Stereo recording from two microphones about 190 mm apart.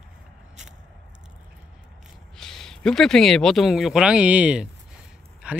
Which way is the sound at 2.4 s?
Centre (ahead or behind).